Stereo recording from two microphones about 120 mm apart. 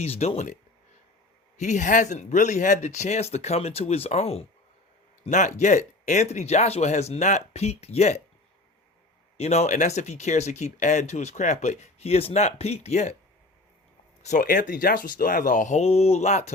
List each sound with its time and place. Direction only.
0.0 s speech: 60° left (ahead or behind)
1.5 s speech: 85° left; by 4.4 s 60° left (ahead or behind)
5.2 s speech: 90° left; by 8.2 s 70° left (ahead or behind)
9.4 s speech: 65° left (ahead or behind)
14.2 s speech: 80° left